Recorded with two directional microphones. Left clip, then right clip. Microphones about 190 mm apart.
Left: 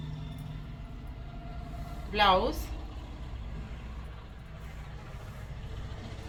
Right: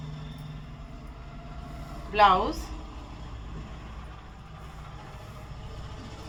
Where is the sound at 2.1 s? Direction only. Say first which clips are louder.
Right 4 dB; 5° right (ahead or behind).